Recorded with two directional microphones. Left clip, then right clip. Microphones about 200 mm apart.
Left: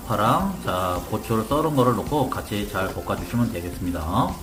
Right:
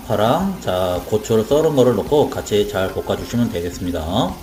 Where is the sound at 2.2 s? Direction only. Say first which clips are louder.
Right 9 dB; 15° right (ahead or behind).